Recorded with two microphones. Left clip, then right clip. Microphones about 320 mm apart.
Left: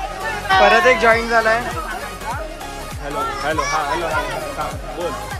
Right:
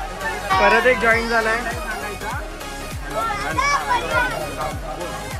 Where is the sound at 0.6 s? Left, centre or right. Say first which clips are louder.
Left 3 dB; centre.